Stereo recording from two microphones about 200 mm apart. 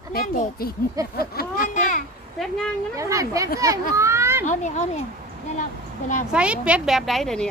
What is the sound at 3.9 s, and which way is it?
Children playing, 15° right (ahead or behind).